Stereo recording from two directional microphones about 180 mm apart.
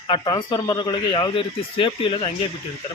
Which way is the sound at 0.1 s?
25° left (ahead or behind).